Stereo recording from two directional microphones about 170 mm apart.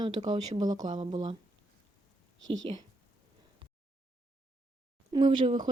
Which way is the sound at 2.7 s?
35° right (ahead or behind).